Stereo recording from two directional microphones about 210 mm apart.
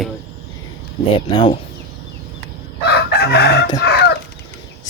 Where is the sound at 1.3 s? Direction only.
20° left (ahead or behind).